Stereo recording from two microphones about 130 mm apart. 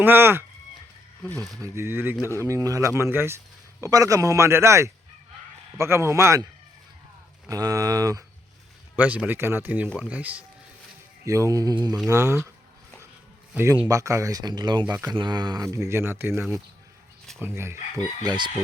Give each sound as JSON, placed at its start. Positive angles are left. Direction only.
{"t": 0.0, "sound": "speech", "side_deg": -15}
{"t": 1.2, "sound": "speech", "side_deg": 5}
{"t": 1.6, "sound": "a man's voice", "side_deg": -20}
{"t": 7.4, "sound": "a man's voice", "side_deg": -25}
{"t": 9.0, "sound": "speech", "side_deg": -10}
{"t": 11.3, "sound": "a man's voice", "side_deg": -25}
{"t": 12.0, "sound": "a man's voice", "side_deg": -20}
{"t": 13.5, "sound": "a man's voice", "side_deg": -15}
{"t": 18.2, "sound": "chicken", "side_deg": -35}